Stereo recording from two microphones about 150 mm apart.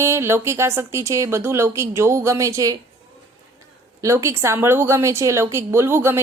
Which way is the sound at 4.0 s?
20° right (ahead or behind).